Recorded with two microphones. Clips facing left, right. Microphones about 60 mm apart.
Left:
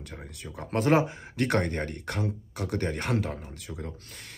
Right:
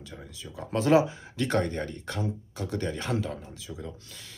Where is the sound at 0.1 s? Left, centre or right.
Left.